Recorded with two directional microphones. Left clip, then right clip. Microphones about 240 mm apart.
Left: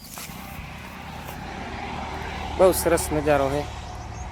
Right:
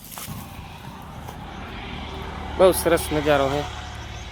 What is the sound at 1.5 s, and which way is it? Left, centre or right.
Vehicle, left.